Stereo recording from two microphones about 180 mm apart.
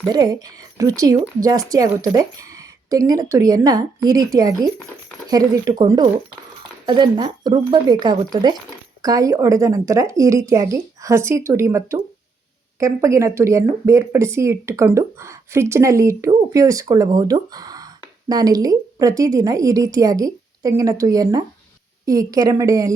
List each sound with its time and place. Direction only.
0.1 s a woman's voice: 20° right (ahead or behind)